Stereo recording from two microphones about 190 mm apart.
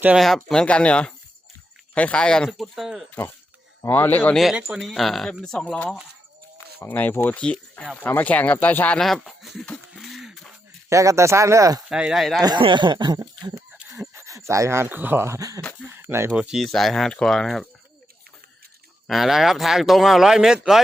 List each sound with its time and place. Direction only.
0.0 s speech: 5° right (ahead or behind)
3.8 s speech: 10° left (ahead or behind)
10.8 s speech: 15° right (ahead or behind)
11.9 s speech: 5° right (ahead or behind)
12.4 s speech: 25° right (ahead or behind)
13.7 s speech: 10° right (ahead or behind)
19.0 s speech: centre (ahead or behind)